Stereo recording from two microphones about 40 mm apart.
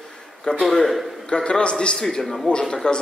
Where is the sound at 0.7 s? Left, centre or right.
Centre.